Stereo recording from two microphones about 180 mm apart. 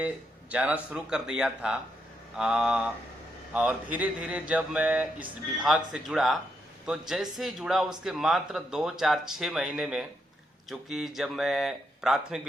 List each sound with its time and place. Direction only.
0.5 s speech: 5° right (ahead or behind)